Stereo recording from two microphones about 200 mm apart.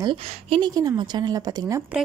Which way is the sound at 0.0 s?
25° right (ahead or behind).